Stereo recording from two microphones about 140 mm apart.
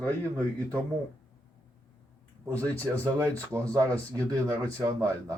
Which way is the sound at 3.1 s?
20° right (ahead or behind).